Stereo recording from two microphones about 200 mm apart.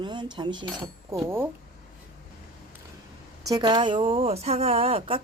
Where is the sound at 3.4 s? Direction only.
20° right (ahead or behind).